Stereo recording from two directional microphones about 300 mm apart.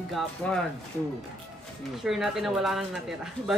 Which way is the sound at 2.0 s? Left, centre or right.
Centre.